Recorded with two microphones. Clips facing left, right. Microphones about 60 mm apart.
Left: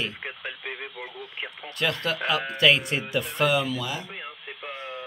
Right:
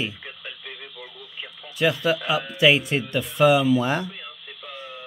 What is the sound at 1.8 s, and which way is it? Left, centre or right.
Speech, centre.